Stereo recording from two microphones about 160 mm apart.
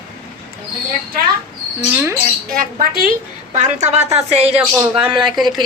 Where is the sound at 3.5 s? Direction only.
45° right (ahead or behind).